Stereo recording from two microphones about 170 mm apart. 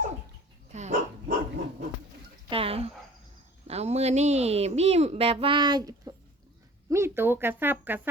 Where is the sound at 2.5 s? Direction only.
35° right (ahead or behind).